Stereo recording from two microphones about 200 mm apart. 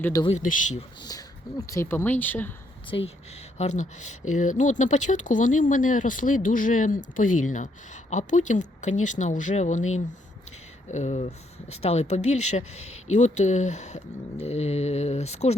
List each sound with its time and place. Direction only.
0.0 s speech: 15° left (ahead or behind)
0.3 s speech: 35° left (ahead or behind)
1.0 s speech: 15° left (ahead or behind)
3.6 s speech: 35° left (ahead or behind)
10.9 s speech: 35° left (ahead or behind)